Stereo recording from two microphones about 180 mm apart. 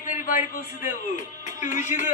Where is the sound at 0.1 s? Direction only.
50° left (ahead or behind).